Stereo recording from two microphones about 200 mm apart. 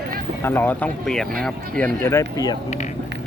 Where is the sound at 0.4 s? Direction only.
10° left (ahead or behind).